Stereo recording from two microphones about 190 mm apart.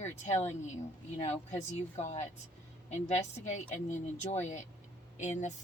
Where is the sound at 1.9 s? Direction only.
35° left (ahead or behind).